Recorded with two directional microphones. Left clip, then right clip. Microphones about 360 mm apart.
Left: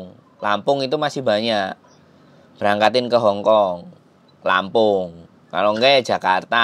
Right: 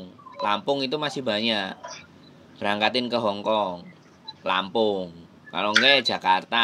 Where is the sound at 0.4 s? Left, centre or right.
Left.